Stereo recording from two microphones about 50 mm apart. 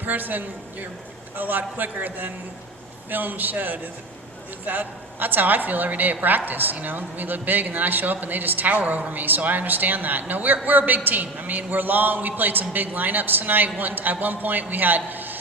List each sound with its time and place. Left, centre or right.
0.0 s a woman's voice: right